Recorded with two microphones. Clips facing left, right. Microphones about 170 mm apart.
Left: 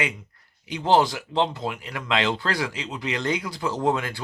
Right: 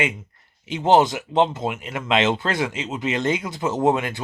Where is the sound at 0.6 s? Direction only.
25° right (ahead or behind).